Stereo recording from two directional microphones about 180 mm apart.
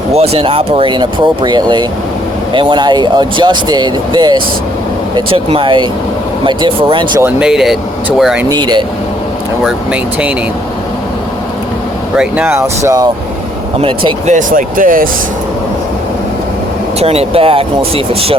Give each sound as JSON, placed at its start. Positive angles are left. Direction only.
{"t": 0.1, "sound": "speech", "side_deg": -35}
{"t": 7.2, "sound": "speech", "side_deg": -10}
{"t": 8.4, "sound": "speech", "side_deg": -25}
{"t": 9.6, "sound": "speech", "side_deg": -5}
{"t": 12.1, "sound": "speech", "side_deg": -5}
{"t": 13.8, "sound": "speech", "side_deg": -30}
{"t": 14.3, "sound": "speech", "side_deg": -50}
{"t": 17.0, "sound": "speech", "side_deg": -35}